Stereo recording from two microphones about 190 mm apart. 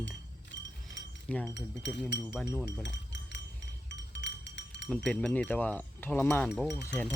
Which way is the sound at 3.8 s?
70° left (ahead or behind).